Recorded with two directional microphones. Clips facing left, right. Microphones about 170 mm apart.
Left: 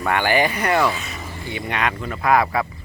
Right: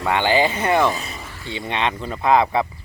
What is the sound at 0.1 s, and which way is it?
Speech, 20° right (ahead or behind).